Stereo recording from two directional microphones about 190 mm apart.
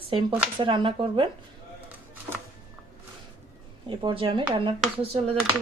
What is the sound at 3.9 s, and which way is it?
Speech, 25° right (ahead or behind).